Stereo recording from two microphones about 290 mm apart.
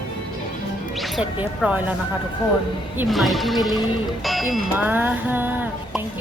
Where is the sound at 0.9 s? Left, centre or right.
Centre.